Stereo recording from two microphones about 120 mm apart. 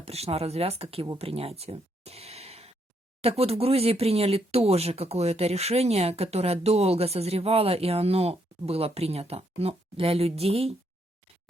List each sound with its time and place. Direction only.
0.0 s speech: 60° right (ahead or behind)
1.2 s a sound: 55° right (ahead or behind)
3.2 s speech: 55° right (ahead or behind)